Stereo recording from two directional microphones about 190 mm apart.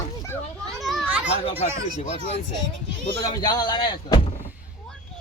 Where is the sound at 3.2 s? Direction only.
20° left (ahead or behind).